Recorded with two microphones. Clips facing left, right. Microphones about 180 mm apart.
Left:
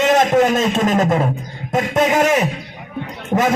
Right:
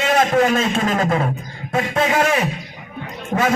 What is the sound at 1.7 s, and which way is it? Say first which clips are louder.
Speech: left 3 dB; 20° left (ahead or behind).